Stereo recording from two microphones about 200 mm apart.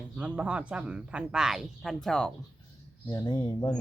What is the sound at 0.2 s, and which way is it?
Speech, 5° right (ahead or behind).